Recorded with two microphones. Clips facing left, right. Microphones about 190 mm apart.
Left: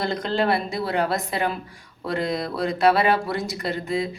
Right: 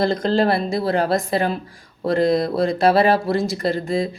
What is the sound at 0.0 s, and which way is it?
Speech, 35° right (ahead or behind).